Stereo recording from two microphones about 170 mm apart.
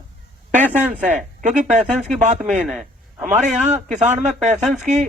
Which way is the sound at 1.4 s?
45° right (ahead or behind).